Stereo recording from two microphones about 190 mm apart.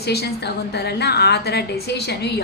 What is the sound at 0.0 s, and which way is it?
A woman's voice, 60° left (ahead or behind).